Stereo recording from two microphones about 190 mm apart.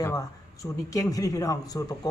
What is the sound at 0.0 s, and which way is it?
Speech, 15° left (ahead or behind).